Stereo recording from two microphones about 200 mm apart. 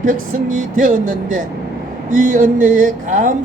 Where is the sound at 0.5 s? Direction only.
40° right (ahead or behind).